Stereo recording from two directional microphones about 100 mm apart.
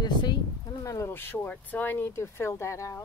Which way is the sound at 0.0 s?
45° left (ahead or behind).